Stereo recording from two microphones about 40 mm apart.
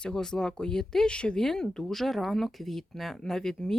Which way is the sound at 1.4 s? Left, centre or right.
Centre.